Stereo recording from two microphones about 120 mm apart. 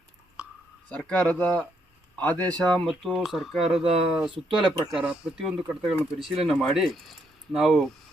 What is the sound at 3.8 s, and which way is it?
Speech, 50° right (ahead or behind).